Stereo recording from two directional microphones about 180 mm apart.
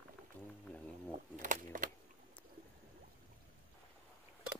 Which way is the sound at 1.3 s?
45° right (ahead or behind).